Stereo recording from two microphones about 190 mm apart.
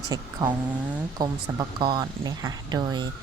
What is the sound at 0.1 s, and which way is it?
Speech, 20° right (ahead or behind).